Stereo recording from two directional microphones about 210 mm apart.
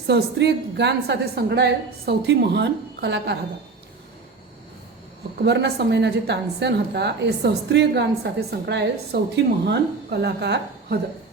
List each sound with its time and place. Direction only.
0.1 s a woman's voice: 55° right (ahead or behind)
5.5 s a woman's voice: 55° right (ahead or behind)